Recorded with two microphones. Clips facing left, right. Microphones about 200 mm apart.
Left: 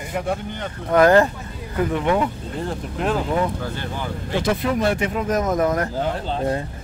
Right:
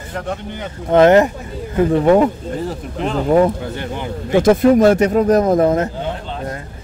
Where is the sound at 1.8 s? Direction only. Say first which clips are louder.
Right 8 dB; 35° right (ahead or behind).